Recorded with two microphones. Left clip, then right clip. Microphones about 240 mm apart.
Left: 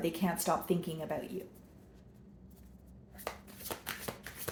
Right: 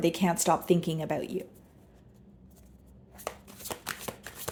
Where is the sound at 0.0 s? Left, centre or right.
Right.